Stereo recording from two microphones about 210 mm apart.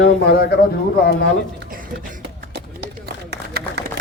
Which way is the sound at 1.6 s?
40° right (ahead or behind).